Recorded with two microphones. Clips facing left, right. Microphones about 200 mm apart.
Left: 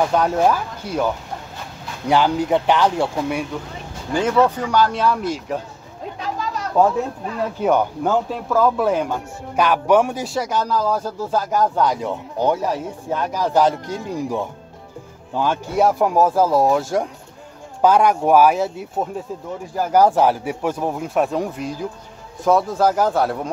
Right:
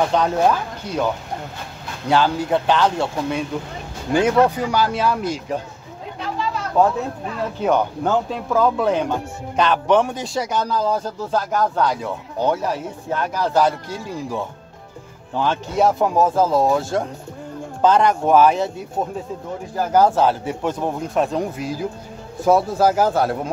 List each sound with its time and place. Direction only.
0.1 s speech: 5° left (ahead or behind)
2.0 s speech: 15° left (ahead or behind)
4.1 s speech: 15° right (ahead or behind)
7.6 s speech: 10° left (ahead or behind)